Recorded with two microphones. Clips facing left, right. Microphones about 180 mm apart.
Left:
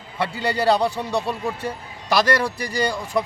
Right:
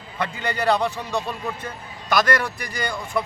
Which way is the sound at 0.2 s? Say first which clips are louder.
Left 3 dB; 35° left (ahead or behind).